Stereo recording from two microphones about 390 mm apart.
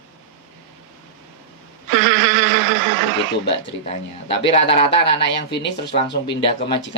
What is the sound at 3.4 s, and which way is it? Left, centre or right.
Speech, centre.